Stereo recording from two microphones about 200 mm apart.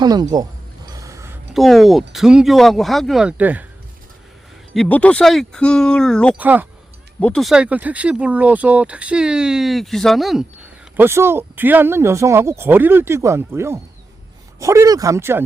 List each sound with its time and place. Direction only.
0.0 s speech: 20° right (ahead or behind)
0.9 s a sound: 15° right (ahead or behind)
1.5 s speech: centre (ahead or behind)
4.7 s speech: 5° left (ahead or behind)
6.3 s speech: 10° right (ahead or behind)
7.2 s speech: 5° left (ahead or behind); by 15.4 s 10° right (ahead or behind)